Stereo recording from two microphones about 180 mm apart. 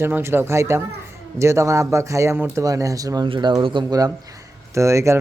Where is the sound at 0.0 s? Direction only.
15° right (ahead or behind).